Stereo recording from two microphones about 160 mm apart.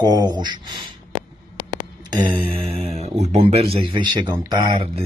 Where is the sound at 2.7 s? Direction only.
40° right (ahead or behind).